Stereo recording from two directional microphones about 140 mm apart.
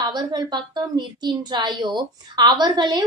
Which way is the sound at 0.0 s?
30° right (ahead or behind).